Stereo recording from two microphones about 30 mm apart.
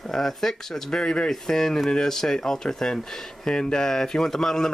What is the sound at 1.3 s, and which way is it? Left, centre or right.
Speech, centre.